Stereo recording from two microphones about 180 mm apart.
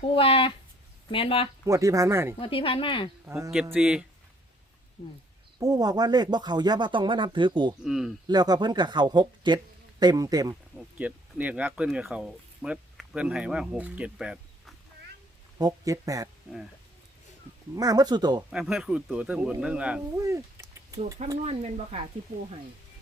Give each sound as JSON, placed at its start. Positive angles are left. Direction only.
{"t": 0.0, "sound": "speech", "side_deg": 30}
{"t": 1.6, "sound": "speech", "side_deg": -15}
{"t": 2.4, "sound": "speech", "side_deg": 30}
{"t": 3.2, "sound": "speech", "side_deg": -15}
{"t": 5.0, "sound": "speech", "side_deg": 35}
{"t": 5.5, "sound": "speech", "side_deg": -20}
{"t": 7.9, "sound": "speech", "side_deg": 0}
{"t": 8.3, "sound": "speech", "side_deg": -25}
{"t": 10.5, "sound": "speech", "side_deg": -10}
{"t": 15.5, "sound": "speech", "side_deg": -20}
{"t": 17.7, "sound": "speech", "side_deg": -20}
{"t": 18.5, "sound": "speech", "side_deg": 0}
{"t": 20.1, "sound": "a sound", "side_deg": -15}
{"t": 21.4, "sound": "speech", "side_deg": -35}